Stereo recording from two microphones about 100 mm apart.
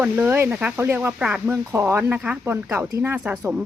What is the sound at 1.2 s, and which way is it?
Speech, 10° right (ahead or behind).